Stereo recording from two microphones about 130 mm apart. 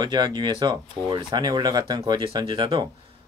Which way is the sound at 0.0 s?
35° right (ahead or behind).